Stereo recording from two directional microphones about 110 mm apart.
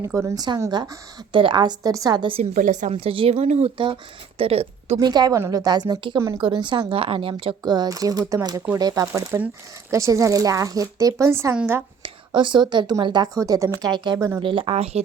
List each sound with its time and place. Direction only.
0.0 s speech: 25° right (ahead or behind)
1.3 s speech: 50° right (ahead or behind)
2.9 s speech: 60° right (ahead or behind); by 3.7 s 85° right
4.4 s a woman's voice: 65° right (ahead or behind)
4.9 s speech: 40° right (ahead or behind); by 7.5 s 55° right (ahead or behind)
7.6 s speech: 40° right (ahead or behind); by 11.8 s 20° right (ahead or behind)
12.0 s speech: 45° right (ahead or behind); by 15.0 s 65° right (ahead or behind)